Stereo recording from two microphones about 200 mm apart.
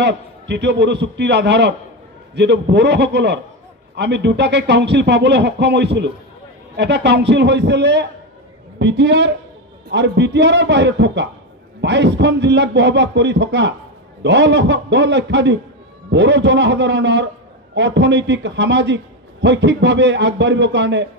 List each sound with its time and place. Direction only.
0.0 s speech: 60° right (ahead or behind)